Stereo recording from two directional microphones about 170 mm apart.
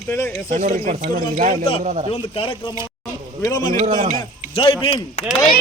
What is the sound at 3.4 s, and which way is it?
Speech, 20° left (ahead or behind).